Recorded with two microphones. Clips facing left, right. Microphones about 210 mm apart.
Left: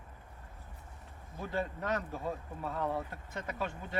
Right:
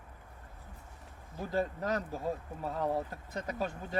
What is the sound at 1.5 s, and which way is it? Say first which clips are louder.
Speech: right 3 dB; 35° right (ahead or behind).